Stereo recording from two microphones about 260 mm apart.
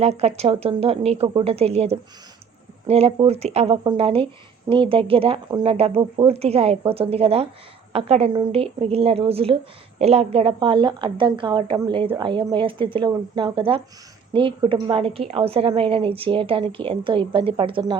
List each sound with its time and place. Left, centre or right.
0.0 s a woman's voice: right